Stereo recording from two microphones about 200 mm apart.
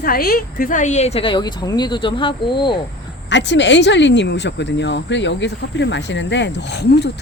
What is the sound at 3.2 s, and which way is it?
Speech, 60° left (ahead or behind).